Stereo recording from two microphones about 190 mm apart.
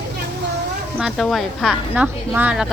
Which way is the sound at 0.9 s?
Centre (ahead or behind).